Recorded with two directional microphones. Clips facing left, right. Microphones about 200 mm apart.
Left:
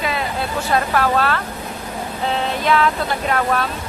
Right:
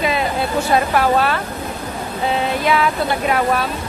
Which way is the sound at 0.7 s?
15° right (ahead or behind).